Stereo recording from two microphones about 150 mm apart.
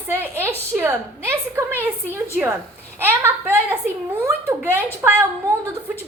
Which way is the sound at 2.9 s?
15° right (ahead or behind).